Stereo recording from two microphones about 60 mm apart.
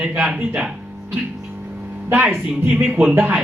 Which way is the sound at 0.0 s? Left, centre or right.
Centre.